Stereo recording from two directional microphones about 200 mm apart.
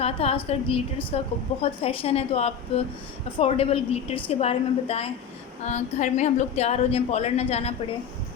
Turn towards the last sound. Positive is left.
turn(degrees=30)  # may be behind; listen again after turning